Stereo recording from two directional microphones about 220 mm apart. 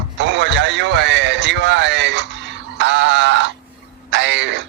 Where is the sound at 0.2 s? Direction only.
55° right (ahead or behind).